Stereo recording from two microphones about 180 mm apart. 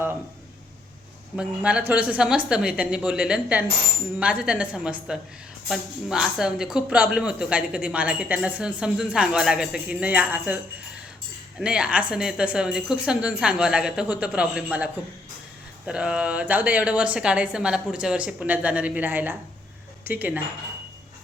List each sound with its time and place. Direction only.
1.4 s speech: 5° right (ahead or behind)
11.6 s speech: 5° right (ahead or behind)
15.9 s a woman's voice: 5° right (ahead or behind)